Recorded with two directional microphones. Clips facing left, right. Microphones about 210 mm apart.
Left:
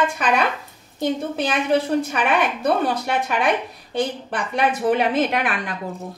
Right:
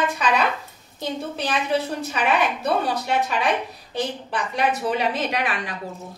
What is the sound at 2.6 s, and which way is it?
Speech, 50° left (ahead or behind).